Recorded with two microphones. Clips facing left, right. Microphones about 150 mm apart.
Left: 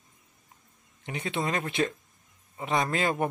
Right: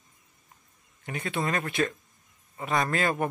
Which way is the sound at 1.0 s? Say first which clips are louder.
Even; 20° left (ahead or behind).